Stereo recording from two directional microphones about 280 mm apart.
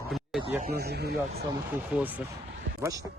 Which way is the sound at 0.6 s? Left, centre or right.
Right.